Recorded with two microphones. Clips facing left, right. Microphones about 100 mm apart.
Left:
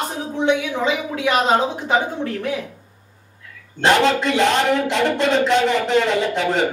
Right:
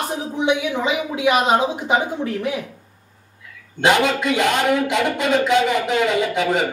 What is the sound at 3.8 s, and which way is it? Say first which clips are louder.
Speech: left 1 dB; 5° right (ahead or behind).